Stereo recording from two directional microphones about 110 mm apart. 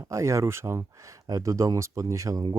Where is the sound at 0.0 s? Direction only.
30° right (ahead or behind).